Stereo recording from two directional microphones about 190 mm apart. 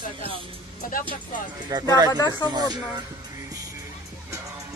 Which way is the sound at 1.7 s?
20° right (ahead or behind).